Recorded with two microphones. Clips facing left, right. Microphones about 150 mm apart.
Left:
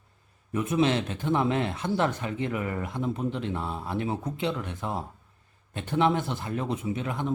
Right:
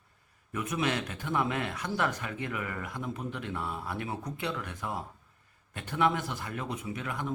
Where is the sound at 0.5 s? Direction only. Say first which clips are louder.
Left 7 dB; 25° left (ahead or behind).